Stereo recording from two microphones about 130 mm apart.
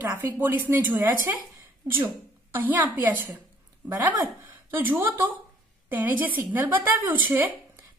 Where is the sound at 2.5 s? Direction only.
15° right (ahead or behind).